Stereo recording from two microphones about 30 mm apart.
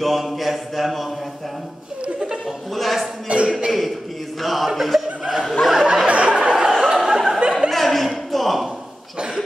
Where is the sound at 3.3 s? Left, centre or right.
Right.